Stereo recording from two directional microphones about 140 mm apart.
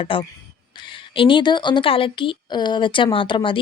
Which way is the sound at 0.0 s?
40° left (ahead or behind).